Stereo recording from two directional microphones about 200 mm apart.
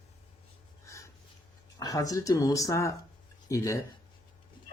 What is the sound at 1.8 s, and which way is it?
Speech, 20° left (ahead or behind).